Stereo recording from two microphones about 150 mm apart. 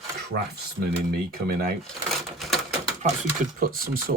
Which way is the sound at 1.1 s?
80° right.